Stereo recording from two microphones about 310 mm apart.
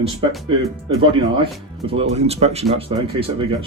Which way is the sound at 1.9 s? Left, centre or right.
Centre.